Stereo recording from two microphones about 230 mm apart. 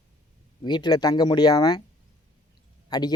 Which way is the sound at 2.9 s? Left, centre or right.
Centre.